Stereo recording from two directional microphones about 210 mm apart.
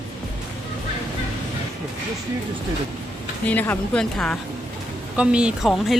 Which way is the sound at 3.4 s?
10° left (ahead or behind).